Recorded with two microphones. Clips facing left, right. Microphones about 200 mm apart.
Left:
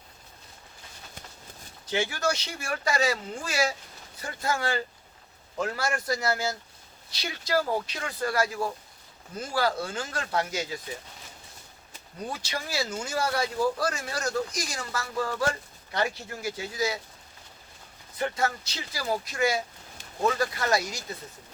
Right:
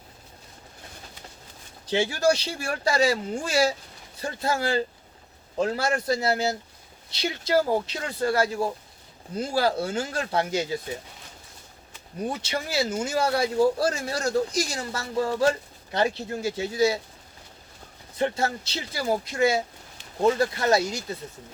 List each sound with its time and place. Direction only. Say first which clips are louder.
1.9 s speech: right 6 dB; 25° right (ahead or behind)
12.3 s speech: right 3 dB; 25° right (ahead or behind)
18.2 s speech: right 3 dB; 25° right (ahead or behind)